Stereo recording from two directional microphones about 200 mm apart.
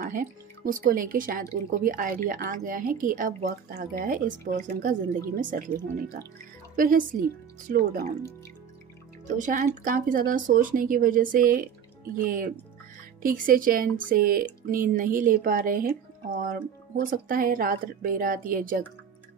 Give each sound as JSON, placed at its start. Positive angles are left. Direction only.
{"t": 0.0, "sound": "speech", "side_deg": -40}
{"t": 9.3, "sound": "speech", "side_deg": -40}